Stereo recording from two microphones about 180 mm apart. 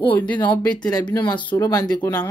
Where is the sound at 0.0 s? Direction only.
10° left (ahead or behind).